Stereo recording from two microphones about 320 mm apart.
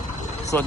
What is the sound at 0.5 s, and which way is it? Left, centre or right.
Speech, centre.